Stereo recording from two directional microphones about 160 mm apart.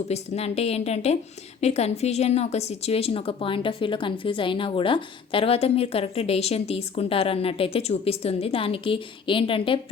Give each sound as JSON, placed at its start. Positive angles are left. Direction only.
{"t": 0.1, "sound": "a woman's voice", "side_deg": 40}